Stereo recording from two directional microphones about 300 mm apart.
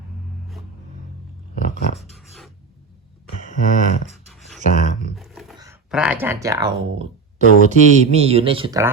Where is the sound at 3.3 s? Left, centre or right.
Left.